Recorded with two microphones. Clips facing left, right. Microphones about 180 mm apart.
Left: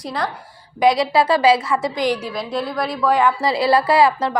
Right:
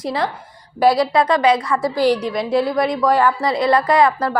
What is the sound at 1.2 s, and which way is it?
Speech, 30° left (ahead or behind).